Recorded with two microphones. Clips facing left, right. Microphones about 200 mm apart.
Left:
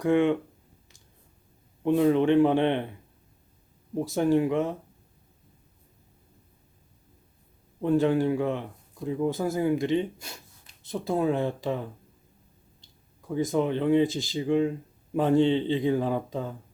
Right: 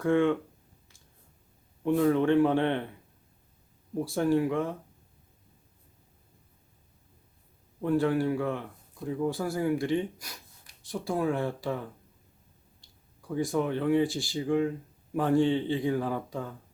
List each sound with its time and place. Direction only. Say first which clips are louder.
0.0 s speech: left 2 dB; 20° left (ahead or behind)
1.8 s speech: left 3 dB; 20° left (ahead or behind)
3.9 s speech: left 3 dB; 20° left (ahead or behind)
7.8 s speech: left 3 dB; 20° left (ahead or behind)
13.2 s speech: left 3 dB; 20° left (ahead or behind)